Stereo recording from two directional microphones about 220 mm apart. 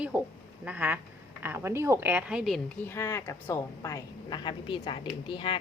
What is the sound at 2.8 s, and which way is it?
A woman's voice, 15° left (ahead or behind).